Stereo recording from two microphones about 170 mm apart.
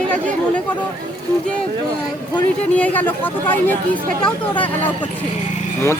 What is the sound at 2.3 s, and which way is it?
Speech, 10° left (ahead or behind).